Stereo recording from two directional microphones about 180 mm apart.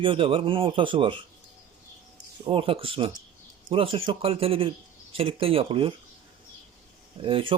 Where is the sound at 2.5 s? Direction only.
30° right (ahead or behind).